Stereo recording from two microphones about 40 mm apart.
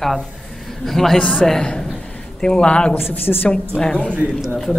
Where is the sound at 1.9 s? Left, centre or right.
Left.